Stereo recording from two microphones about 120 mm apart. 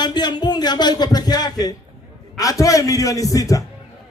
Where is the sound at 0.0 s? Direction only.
35° left (ahead or behind).